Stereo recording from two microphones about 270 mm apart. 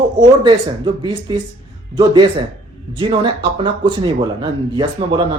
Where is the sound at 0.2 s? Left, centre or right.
Centre.